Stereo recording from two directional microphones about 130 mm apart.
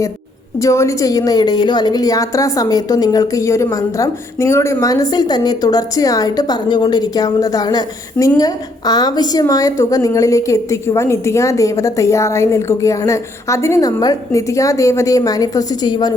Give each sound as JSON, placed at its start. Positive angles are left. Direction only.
{"t": 0.6, "sound": "a woman's voice", "side_deg": 25}